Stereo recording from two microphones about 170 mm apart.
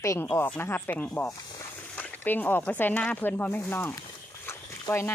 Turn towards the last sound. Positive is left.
turn(degrees=15)  # may be behind; listen again after turning